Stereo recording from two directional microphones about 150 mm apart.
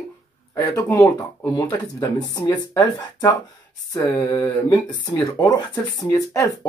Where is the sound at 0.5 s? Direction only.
15° left (ahead or behind).